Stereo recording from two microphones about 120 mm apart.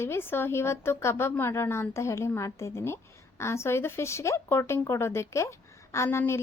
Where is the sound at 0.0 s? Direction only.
20° left (ahead or behind).